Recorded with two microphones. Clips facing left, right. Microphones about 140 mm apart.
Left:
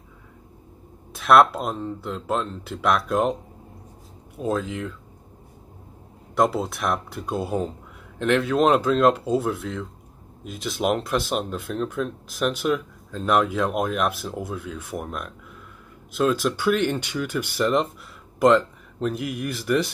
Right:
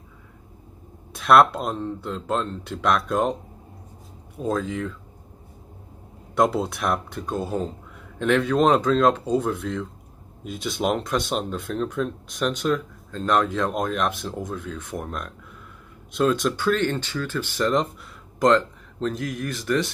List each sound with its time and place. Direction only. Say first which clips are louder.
1.1 s speech: even; centre (ahead or behind)
4.4 s speech: even; 5° left (ahead or behind)
6.3 s speech: right 1 dB; centre (ahead or behind)